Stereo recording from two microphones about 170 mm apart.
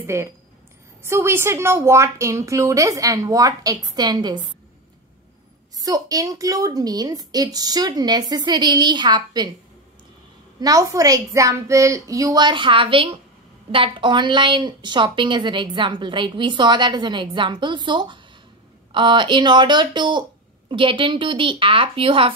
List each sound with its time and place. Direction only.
0.0 s a woman's voice: 15° right (ahead or behind)
5.8 s a woman's voice: 20° right (ahead or behind)
10.6 s a woman's voice: 20° right (ahead or behind)